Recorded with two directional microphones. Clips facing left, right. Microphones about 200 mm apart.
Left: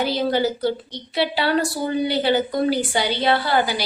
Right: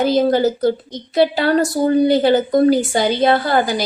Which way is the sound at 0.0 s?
45° right (ahead or behind).